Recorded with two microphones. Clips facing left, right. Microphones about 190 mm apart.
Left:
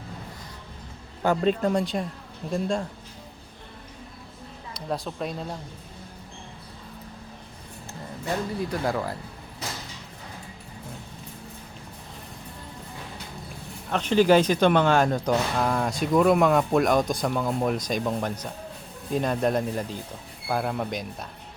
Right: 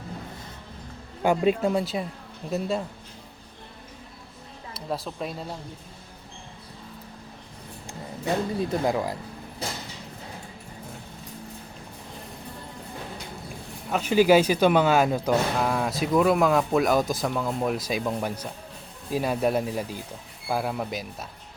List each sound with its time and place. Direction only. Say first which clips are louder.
1.2 s speech: right 1 dB; 10° right (ahead or behind)
4.7 s speech: left 1 dB; centre (ahead or behind)
8.7 s speech: right 2 dB; 20° right (ahead or behind)
13.9 s speech: even; 10° right (ahead or behind)